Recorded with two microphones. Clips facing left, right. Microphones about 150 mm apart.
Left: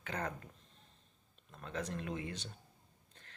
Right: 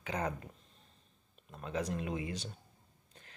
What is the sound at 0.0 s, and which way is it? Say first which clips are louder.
Speech: right 4 dB; 10° right (ahead or behind).